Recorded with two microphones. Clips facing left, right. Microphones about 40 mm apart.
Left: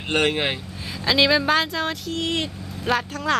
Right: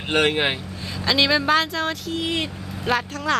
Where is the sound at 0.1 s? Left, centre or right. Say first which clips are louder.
Right 1 dB; centre.